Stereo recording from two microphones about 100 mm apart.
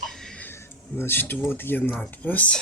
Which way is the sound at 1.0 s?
20° left (ahead or behind).